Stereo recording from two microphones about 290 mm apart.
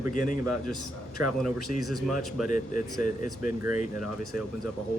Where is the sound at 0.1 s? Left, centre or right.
Left.